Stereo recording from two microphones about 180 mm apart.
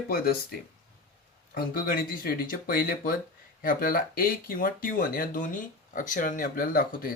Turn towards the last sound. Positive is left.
turn(degrees=50)  # may be behind; listen again after turning